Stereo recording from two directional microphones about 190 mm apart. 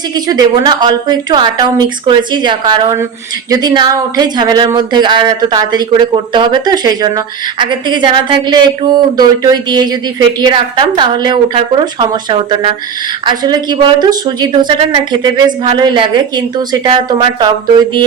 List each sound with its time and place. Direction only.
0.1 s speech: 20° right (ahead or behind)